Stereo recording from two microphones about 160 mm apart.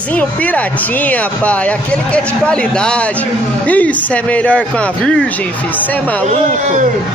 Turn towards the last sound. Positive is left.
turn(degrees=-50)  # may be behind; listen again after turning